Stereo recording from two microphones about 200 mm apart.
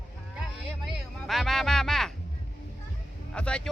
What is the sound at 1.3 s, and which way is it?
Music, centre (ahead or behind).